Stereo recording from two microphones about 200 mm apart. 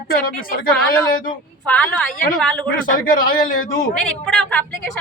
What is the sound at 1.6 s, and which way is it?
A woman's voice, 5° left (ahead or behind).